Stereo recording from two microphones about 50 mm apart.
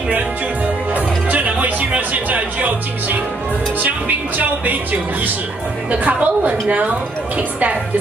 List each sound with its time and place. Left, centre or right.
0.9 s music: right
3.8 s a woman's voice: right